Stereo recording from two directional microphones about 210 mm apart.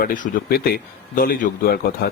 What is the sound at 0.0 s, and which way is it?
Speech, 40° left (ahead or behind).